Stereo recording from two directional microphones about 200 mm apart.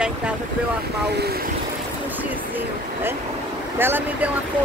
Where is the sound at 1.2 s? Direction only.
50° right (ahead or behind).